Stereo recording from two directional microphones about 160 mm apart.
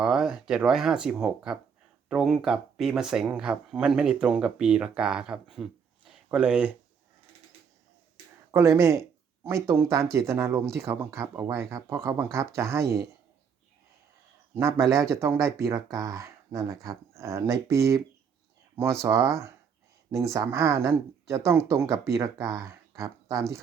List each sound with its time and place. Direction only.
0.0 s speech: 5° right (ahead or behind)
6.1 s a sound: 5° right (ahead or behind)
8.5 s speech: 15° right (ahead or behind)
12.8 s a man's voice: 85° right
14.5 s speech: 20° right (ahead or behind)
19.0 s speech: 20° right (ahead or behind)